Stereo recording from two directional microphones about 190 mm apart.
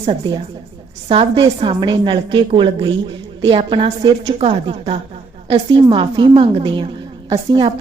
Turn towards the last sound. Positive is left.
turn(degrees=-25)  # may be behind; listen again after turning